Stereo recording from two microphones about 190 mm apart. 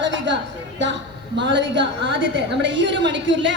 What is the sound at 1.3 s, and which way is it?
A woman's voice, 70° right (ahead or behind).